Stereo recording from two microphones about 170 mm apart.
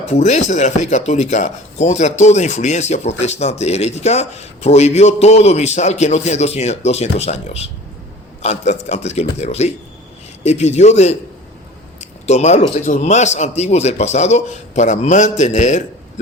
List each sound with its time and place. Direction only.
0.1 s speech: 45° left (ahead or behind)